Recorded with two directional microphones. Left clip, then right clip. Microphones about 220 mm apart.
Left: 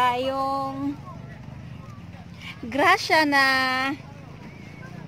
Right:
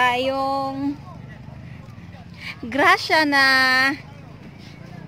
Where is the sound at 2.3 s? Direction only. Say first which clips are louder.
Right 3 dB; 15° right (ahead or behind).